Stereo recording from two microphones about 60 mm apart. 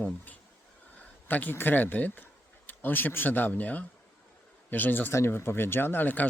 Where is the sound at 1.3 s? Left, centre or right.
Left.